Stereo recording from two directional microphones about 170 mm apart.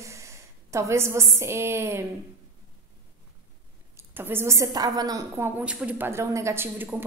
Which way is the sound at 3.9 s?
15° right (ahead or behind).